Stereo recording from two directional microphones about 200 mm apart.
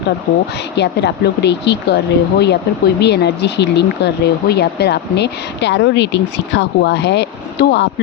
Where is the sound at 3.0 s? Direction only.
55° left (ahead or behind).